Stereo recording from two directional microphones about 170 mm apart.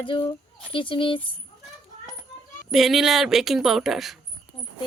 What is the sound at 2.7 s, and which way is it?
Speech, centre (ahead or behind).